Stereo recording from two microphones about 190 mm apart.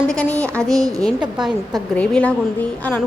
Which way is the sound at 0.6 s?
20° right (ahead or behind).